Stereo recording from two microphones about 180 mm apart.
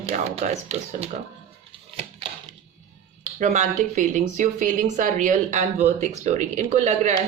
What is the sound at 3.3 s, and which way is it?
Speech, 40° right (ahead or behind).